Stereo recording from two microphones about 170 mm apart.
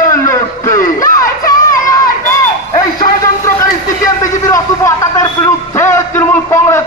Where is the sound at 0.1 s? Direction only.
20° left (ahead or behind).